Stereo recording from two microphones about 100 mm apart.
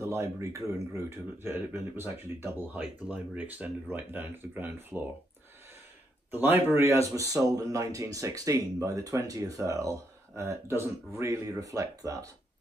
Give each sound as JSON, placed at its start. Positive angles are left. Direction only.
{"t": 0.0, "sound": "speech", "side_deg": -30}
{"t": 6.3, "sound": "speech", "side_deg": -20}